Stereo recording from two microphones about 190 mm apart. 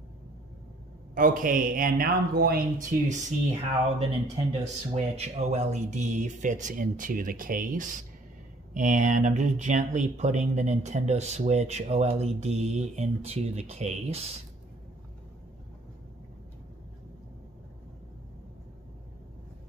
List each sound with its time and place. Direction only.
1.1 s speech: 45° right (ahead or behind)
4.5 s speech: 35° right (ahead or behind)